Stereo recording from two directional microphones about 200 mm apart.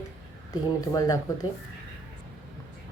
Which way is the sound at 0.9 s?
20° left (ahead or behind).